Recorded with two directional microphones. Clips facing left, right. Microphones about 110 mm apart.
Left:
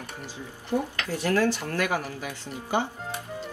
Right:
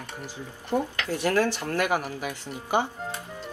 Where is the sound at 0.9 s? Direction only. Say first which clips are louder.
Even; 20° right (ahead or behind).